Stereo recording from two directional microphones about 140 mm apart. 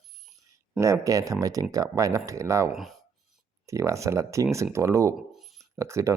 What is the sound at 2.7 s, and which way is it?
Speech, centre (ahead or behind).